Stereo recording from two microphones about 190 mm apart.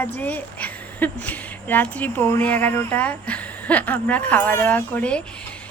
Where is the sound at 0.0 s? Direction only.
10° left (ahead or behind).